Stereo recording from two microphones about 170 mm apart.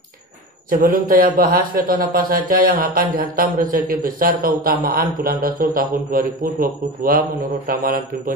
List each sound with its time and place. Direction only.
0.7 s a man's voice: 55° right (ahead or behind)